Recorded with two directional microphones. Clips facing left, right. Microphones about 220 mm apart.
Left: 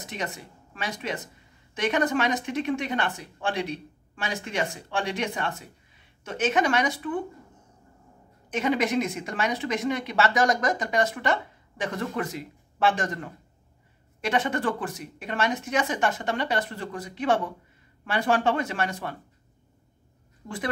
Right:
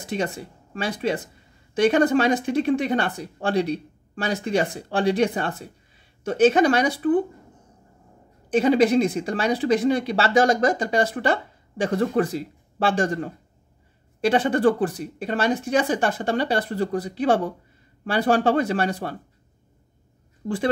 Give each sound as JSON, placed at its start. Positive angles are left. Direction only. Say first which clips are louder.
{"t": 0.0, "sound": "speech", "louder": "right 7 dB", "side_deg": -30}
{"t": 8.5, "sound": "speech", "louder": "right 8 dB", "side_deg": -35}
{"t": 20.4, "sound": "speech", "louder": "right 9 dB", "side_deg": -30}